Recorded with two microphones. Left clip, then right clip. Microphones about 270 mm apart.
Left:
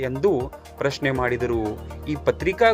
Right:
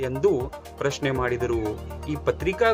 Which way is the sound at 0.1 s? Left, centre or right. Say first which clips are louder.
Even; centre.